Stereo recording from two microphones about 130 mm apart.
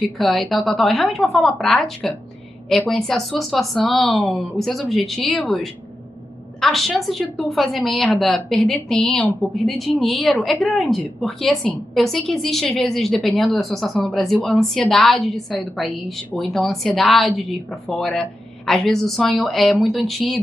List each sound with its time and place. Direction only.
0.2 s a woman's voice: centre (ahead or behind)